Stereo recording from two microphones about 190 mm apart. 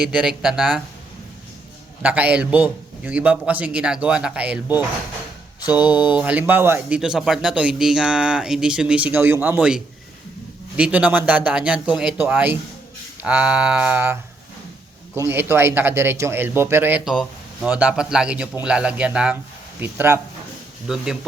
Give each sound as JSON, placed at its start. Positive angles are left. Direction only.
{"t": 0.0, "sound": "speech", "side_deg": -5}
{"t": 2.0, "sound": "speech", "side_deg": -5}